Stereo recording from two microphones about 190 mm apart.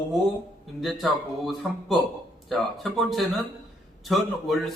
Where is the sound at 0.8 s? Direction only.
Centre (ahead or behind).